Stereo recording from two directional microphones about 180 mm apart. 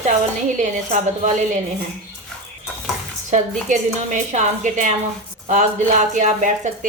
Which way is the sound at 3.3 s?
45° right (ahead or behind).